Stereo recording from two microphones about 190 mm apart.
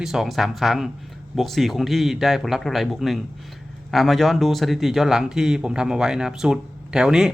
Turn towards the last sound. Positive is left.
turn(degrees=-5)  # may be behind; listen again after turning